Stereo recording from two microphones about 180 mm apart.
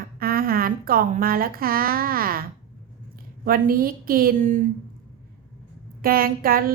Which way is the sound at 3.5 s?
55° right (ahead or behind).